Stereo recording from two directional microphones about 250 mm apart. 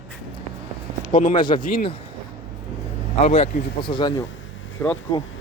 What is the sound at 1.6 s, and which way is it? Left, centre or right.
Speech, left.